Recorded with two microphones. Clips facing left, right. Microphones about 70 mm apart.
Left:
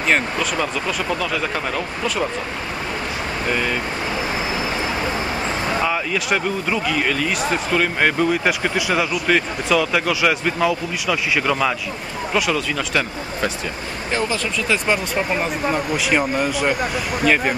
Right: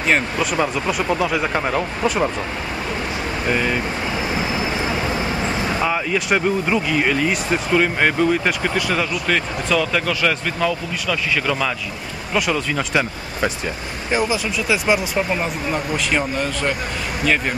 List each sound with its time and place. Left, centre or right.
1.1 s speech: centre
3.4 s speech: centre
5.8 s speech: centre
12.7 s speech: centre
15.3 s speech: centre